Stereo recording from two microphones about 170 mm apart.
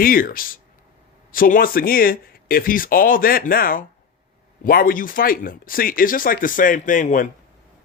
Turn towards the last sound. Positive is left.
turn(degrees=50)  # may be behind; listen again after turning